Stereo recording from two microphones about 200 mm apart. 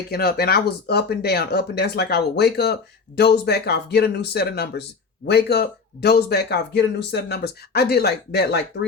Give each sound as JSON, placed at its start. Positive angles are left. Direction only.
{"t": 0.1, "sound": "speech", "side_deg": 50}